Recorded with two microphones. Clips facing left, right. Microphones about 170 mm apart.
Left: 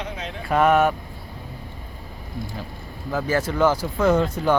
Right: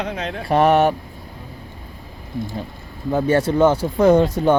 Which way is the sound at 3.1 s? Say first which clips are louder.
Right 6 dB; 30° right (ahead or behind).